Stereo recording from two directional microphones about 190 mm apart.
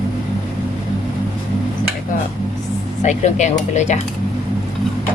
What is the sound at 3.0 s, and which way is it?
Speech, 40° left (ahead or behind).